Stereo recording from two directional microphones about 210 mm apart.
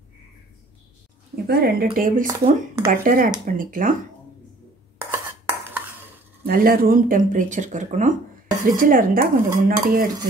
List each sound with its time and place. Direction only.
1.3 s speech: 45° right (ahead or behind)
5.1 s dishes: 10° right (ahead or behind)
6.4 s speech: 45° right (ahead or behind)
9.7 s dishes: 45° right (ahead or behind)